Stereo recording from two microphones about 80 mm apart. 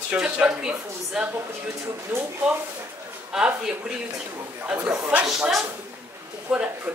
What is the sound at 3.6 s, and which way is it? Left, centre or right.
Speech, centre.